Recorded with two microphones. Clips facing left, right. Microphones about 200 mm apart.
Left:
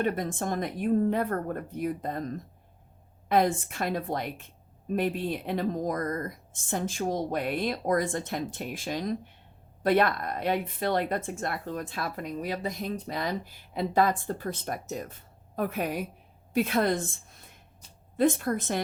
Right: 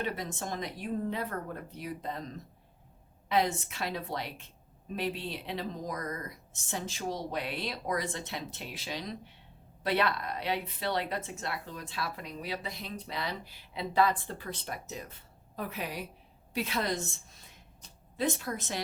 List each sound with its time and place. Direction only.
0.0 s a woman's voice: 50° left (ahead or behind)